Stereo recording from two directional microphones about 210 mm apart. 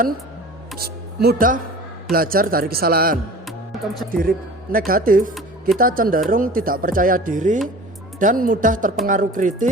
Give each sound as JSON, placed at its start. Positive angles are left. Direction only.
{"t": 0.8, "sound": "a man's voice", "side_deg": -50}
{"t": 3.4, "sound": "music", "side_deg": 0}
{"t": 4.1, "sound": "a man's voice", "side_deg": -40}